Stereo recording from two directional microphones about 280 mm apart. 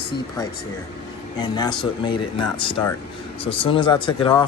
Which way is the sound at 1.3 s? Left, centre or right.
Centre.